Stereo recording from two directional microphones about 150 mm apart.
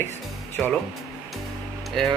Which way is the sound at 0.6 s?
Centre (ahead or behind).